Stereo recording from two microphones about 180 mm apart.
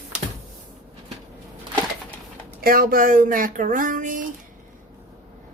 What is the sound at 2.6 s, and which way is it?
Speech, 55° right (ahead or behind).